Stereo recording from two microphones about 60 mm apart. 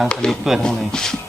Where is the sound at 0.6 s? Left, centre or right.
Centre.